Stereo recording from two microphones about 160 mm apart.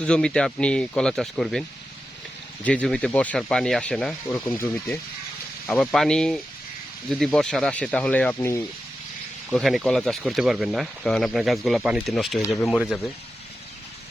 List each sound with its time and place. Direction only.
0.0 s speech: 5° left (ahead or behind)
2.6 s speech: 5° left (ahead or behind)
9.5 s speech: centre (ahead or behind)